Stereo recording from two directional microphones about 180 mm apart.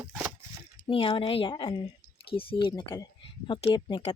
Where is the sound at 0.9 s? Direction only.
30° left (ahead or behind).